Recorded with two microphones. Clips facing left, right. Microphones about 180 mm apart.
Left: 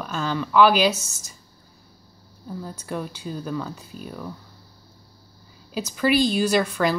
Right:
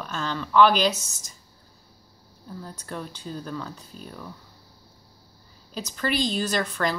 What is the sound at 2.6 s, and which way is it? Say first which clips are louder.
A woman's voice: left 5 dB; 5° left (ahead or behind).